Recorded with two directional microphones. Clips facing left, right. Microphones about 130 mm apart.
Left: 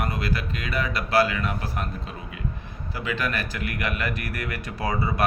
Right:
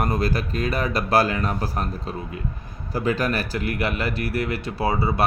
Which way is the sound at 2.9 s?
40° right (ahead or behind).